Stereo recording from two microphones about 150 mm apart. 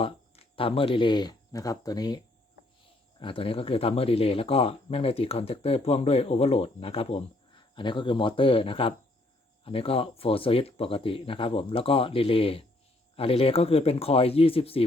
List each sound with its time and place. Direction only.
0.0 s speech: 35° left (ahead or behind)